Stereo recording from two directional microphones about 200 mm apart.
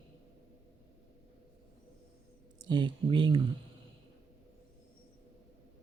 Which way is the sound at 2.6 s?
25° right (ahead or behind).